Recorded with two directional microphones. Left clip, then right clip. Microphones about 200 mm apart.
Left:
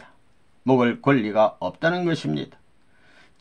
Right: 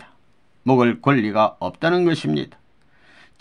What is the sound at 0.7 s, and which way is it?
Speech, 40° right (ahead or behind).